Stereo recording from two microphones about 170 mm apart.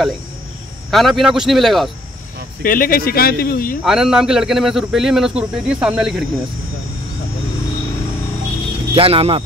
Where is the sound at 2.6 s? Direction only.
55° left (ahead or behind).